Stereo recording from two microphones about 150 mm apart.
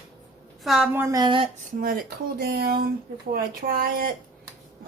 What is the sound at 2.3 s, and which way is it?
Speech, 85° right.